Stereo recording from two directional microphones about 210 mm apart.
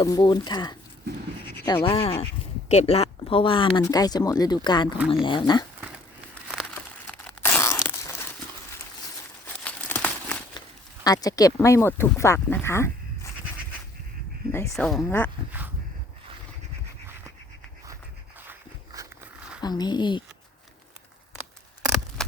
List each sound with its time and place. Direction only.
0.0 s speech: 20° left (ahead or behind)
7.1 s tearing: 10° left (ahead or behind)
9.6 s crumpling: 10° left (ahead or behind)
11.0 s speech: 15° left (ahead or behind)
14.7 s speech: centre (ahead or behind)
18.9 s a sound: 15° right (ahead or behind)
19.6 s speech: 20° left (ahead or behind)
22.2 s a sound: centre (ahead or behind)